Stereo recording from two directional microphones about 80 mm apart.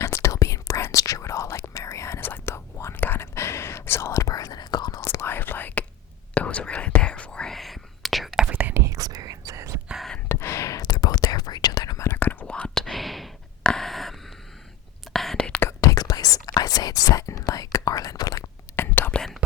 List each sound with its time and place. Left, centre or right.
0.0 s whispering: left
4.9 s whispering: left; by 8.4 s centre
8.4 s whispering: right
8.8 s whispering: right
10.2 s whispering: left
11.9 s whispering: left; by 13.7 s centre
13.7 s a sound: centre
15.1 s whispering: centre
15.8 s whispering: left
18.4 s whispering: left
19.1 s whispering: centre